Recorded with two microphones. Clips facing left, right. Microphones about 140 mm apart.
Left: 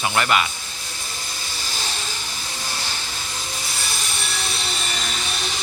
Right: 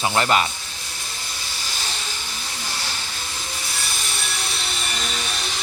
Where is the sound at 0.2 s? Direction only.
30° right (ahead or behind).